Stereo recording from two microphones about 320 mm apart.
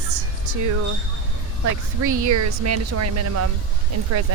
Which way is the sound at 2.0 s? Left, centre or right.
Right.